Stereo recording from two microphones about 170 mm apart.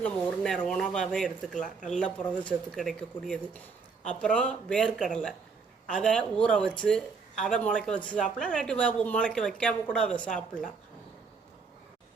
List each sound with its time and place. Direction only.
0.0 s speech: 5° left (ahead or behind)